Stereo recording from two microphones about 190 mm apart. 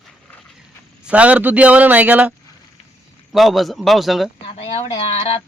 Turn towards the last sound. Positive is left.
turn(degrees=30)  # may be behind; listen again after turning